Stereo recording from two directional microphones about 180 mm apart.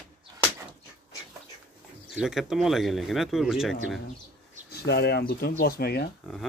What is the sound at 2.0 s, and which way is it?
Speech, centre (ahead or behind).